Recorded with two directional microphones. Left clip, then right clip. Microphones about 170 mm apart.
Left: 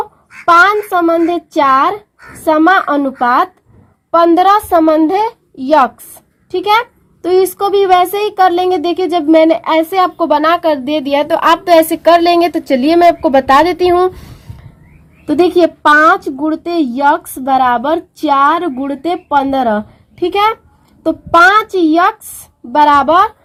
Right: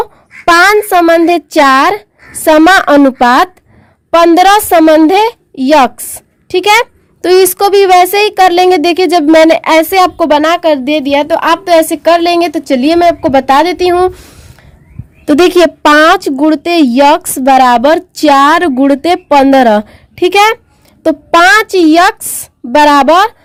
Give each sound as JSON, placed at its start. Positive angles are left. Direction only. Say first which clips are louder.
{"t": 0.4, "sound": "a woman's voice", "louder": "right 2 dB", "side_deg": -60}
{"t": 15.3, "sound": "a woman's voice", "louder": "right 4 dB", "side_deg": -60}